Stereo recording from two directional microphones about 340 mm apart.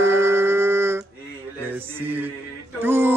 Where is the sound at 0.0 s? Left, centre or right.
Centre.